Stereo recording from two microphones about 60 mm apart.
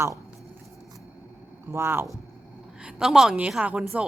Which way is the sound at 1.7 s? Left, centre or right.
Right.